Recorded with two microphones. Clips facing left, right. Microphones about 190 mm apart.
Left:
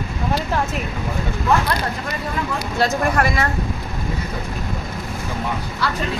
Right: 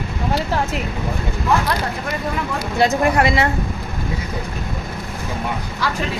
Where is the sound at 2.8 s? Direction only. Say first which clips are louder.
Right 3 dB; 20° right (ahead or behind).